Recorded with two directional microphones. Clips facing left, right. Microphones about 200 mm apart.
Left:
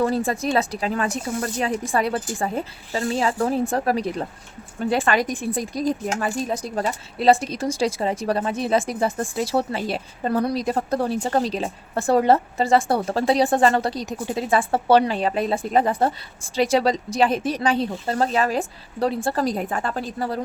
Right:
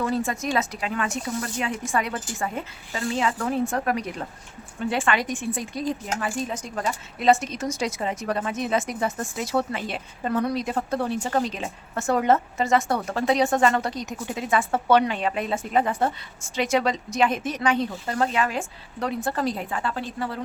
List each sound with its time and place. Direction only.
0.0 s speech: 35° left (ahead or behind)